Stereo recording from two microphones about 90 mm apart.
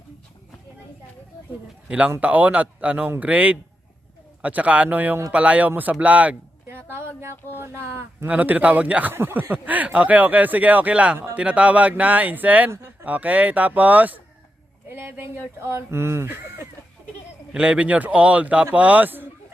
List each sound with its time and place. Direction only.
1.9 s speech: 20° right (ahead or behind)
6.9 s a sound: 30° right (ahead or behind)
7.5 s speech: 25° right (ahead or behind)
8.3 s speech: 15° right (ahead or behind)
17.5 s speech: 15° right (ahead or behind)